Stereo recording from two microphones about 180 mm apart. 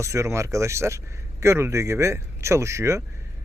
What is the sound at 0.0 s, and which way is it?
Speech, 15° right (ahead or behind).